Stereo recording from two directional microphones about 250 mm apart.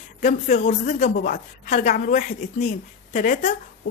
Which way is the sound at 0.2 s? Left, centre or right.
Left.